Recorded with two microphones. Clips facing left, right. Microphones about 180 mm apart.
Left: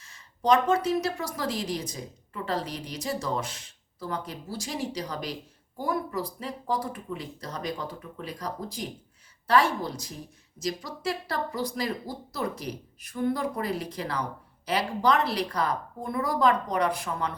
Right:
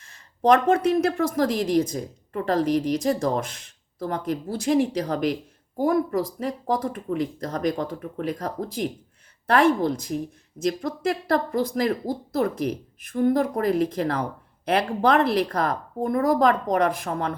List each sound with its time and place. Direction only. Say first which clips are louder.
0.4 s a woman's voice: right 5 dB; 55° right (ahead or behind)